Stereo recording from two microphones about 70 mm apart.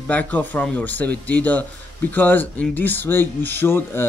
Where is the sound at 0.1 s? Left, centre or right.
Left.